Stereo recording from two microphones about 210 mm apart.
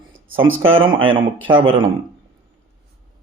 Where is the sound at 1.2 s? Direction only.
25° right (ahead or behind).